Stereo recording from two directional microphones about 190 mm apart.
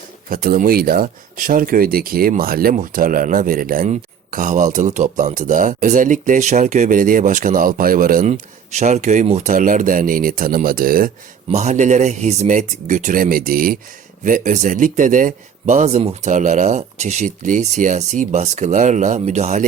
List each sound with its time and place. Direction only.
0.3 s speech: 45° right (ahead or behind)
11.5 s speech: 40° right (ahead or behind)